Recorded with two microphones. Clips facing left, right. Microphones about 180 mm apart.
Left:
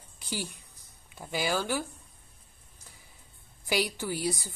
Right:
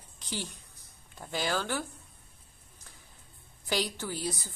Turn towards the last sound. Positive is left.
turn(degrees=10)  # may be behind; listen again after turning